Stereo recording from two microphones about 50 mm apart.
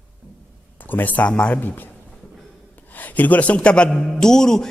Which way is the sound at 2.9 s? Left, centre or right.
Left.